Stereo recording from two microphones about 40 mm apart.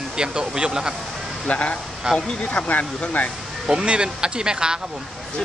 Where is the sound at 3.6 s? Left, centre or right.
Right.